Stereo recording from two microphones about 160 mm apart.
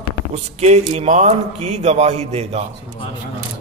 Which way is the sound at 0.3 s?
40° right (ahead or behind).